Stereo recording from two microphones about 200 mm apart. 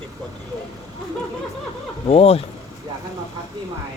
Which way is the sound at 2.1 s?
30° left (ahead or behind).